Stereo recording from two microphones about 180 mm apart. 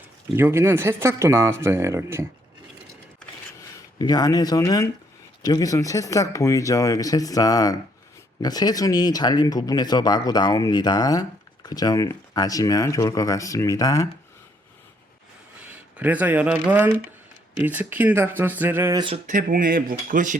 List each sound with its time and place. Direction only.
0.3 s speech: 15° right (ahead or behind)
3.9 s speech: 20° left (ahead or behind)
15.7 s speech: 10° right (ahead or behind)
19.3 s speech: 45° right (ahead or behind)